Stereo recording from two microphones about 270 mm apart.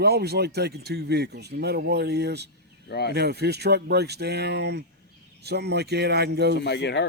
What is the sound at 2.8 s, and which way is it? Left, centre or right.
Speech, left.